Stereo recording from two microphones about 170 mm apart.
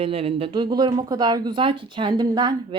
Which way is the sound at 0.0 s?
35° right (ahead or behind).